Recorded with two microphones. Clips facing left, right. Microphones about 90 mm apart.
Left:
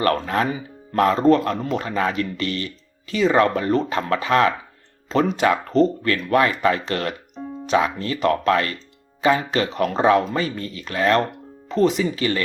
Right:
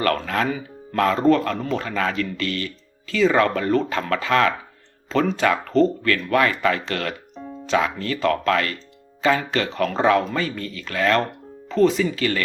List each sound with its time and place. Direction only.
0.0 s speech: 20° left (ahead or behind)